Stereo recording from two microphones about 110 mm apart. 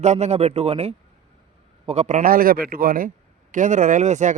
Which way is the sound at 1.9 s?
85° right.